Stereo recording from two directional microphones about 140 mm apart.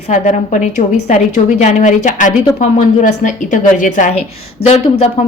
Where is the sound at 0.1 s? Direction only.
60° left (ahead or behind).